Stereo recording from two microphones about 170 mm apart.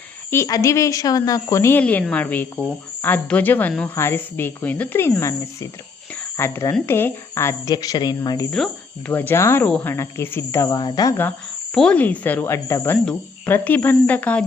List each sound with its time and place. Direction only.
0.3 s speech: 20° left (ahead or behind)
8.4 s speech: 5° left (ahead or behind); by 11.1 s 25° left (ahead or behind)
11.2 s speech: 5° left (ahead or behind)